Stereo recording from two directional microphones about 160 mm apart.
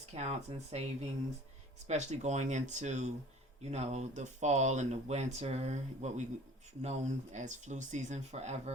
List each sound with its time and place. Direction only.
0.1 s speech: 40° right (ahead or behind)
1.9 s speech: 45° right (ahead or behind)